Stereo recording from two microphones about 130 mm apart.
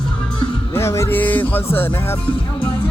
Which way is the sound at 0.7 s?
20° left (ahead or behind).